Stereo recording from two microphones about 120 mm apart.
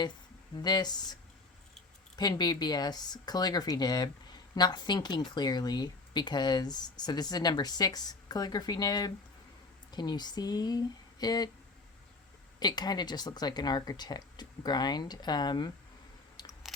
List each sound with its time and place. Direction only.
0.5 s speech: 35° left (ahead or behind)
2.1 s speech: 35° left (ahead or behind)
12.5 s speech: 35° left (ahead or behind)
16.4 s camera: 35° left (ahead or behind)